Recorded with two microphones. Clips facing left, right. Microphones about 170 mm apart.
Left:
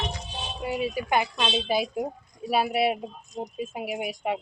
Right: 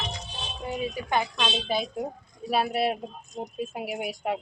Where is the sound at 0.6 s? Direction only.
10° left (ahead or behind).